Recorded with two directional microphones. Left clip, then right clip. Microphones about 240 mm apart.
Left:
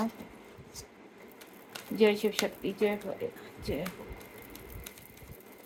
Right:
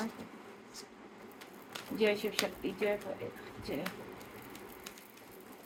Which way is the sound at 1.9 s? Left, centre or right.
Left.